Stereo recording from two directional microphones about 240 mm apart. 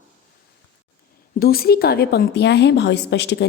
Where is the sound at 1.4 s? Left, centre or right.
Left.